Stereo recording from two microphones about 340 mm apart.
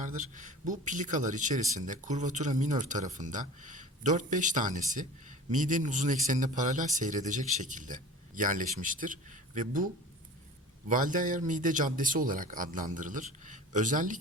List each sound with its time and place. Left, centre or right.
0.0 s speech: right